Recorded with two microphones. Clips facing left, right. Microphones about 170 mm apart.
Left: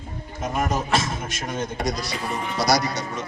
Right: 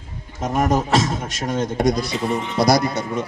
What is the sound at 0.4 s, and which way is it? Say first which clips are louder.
A man's voice: right 6 dB; 45° right (ahead or behind).